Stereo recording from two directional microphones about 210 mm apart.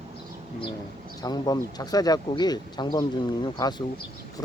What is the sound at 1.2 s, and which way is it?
Speech, 20° left (ahead or behind).